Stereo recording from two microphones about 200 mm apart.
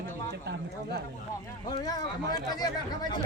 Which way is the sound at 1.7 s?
20° left (ahead or behind).